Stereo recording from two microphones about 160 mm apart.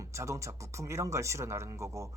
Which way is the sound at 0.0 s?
20° right (ahead or behind).